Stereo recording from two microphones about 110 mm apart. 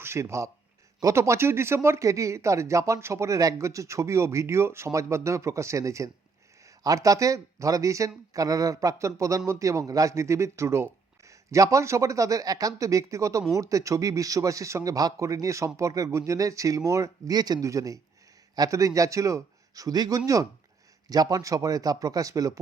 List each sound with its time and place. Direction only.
0.0 s speech: 25° right (ahead or behind)